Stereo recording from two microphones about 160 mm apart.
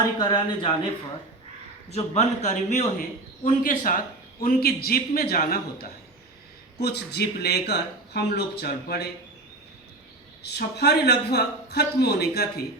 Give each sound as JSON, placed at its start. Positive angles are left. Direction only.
{"t": 0.2, "sound": "speech", "side_deg": 25}
{"t": 1.9, "sound": "a man's voice", "side_deg": 40}
{"t": 3.4, "sound": "a man's voice", "side_deg": 60}
{"t": 6.7, "sound": "a man's voice", "side_deg": 90}
{"t": 10.4, "sound": "a man's voice", "side_deg": 90}